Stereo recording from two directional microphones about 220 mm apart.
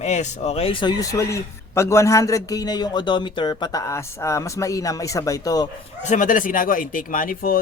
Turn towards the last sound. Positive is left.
turn(degrees=40)  # may be behind; listen again after turning